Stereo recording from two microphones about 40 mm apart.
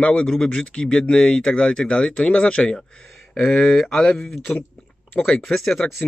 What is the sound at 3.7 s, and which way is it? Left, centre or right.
Speech, centre.